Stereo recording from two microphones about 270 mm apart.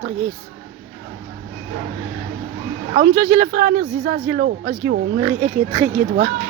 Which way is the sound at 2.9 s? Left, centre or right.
Right.